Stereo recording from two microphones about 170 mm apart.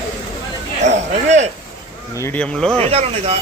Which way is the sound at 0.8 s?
40° right (ahead or behind).